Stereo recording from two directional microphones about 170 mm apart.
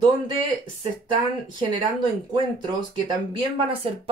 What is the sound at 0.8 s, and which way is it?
Speech, 30° right (ahead or behind).